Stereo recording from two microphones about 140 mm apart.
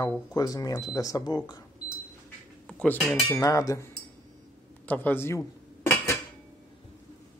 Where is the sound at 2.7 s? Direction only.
5° left (ahead or behind).